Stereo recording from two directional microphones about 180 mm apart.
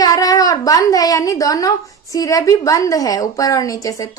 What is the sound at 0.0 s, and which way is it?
A woman's voice, 20° left (ahead or behind).